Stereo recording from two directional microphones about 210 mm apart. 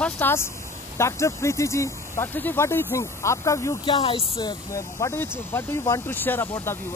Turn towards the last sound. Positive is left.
turn(degrees=10)  # may be behind; listen again after turning